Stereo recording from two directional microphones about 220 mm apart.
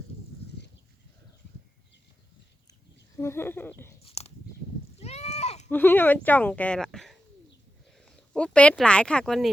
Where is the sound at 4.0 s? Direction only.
25° left (ahead or behind).